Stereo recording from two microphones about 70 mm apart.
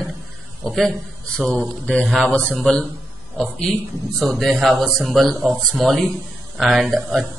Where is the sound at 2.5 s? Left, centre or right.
Centre.